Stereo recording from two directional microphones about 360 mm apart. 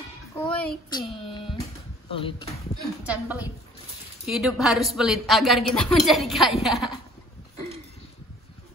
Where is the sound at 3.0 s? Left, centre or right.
Centre.